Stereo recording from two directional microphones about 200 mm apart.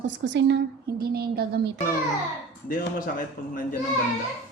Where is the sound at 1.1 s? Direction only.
50° right (ahead or behind).